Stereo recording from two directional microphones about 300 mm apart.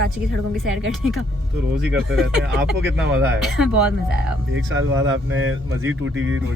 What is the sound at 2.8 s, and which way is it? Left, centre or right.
Speech, right.